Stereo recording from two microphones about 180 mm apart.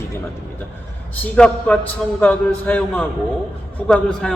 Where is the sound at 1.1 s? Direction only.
5° left (ahead or behind).